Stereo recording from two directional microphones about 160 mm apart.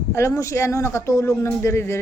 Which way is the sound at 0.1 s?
20° left (ahead or behind).